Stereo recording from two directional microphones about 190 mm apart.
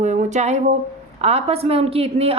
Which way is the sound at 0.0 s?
40° right (ahead or behind).